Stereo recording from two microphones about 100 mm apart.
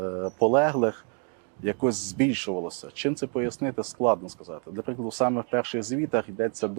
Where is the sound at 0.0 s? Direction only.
25° right (ahead or behind).